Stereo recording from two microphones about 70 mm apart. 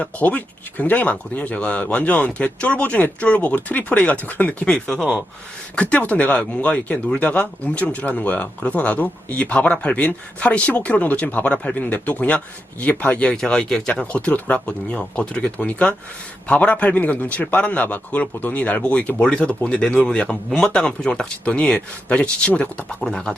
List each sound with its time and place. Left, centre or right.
0.0 s speech: left
5.7 s speech: left